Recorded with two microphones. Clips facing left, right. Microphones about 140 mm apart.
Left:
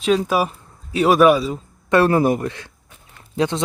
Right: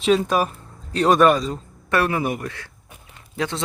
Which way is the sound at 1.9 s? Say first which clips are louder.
Left 6 dB; 35° left (ahead or behind).